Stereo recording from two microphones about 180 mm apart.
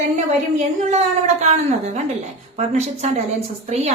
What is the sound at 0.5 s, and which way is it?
A woman's voice, 40° right (ahead or behind).